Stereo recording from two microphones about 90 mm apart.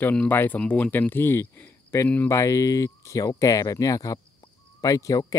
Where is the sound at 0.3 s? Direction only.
20° left (ahead or behind).